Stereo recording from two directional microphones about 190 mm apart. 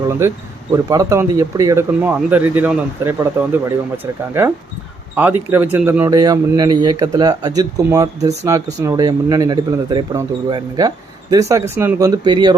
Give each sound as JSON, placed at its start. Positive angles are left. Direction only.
{"t": 0.2, "sound": "speech", "side_deg": -15}